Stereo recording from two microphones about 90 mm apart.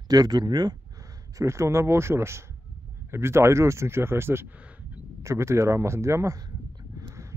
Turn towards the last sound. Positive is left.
turn(degrees=-35)  # may be behind; listen again after turning